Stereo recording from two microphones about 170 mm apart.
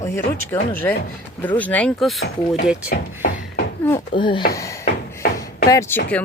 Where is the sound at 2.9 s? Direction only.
60° left (ahead or behind).